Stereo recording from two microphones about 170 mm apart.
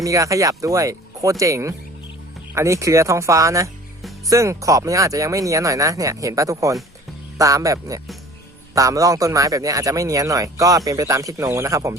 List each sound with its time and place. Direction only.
0.0 s a man's voice: 20° right (ahead or behind)